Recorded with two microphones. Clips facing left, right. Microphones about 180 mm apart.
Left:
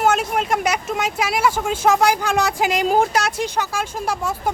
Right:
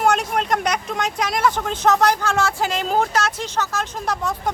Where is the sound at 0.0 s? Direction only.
5° left (ahead or behind).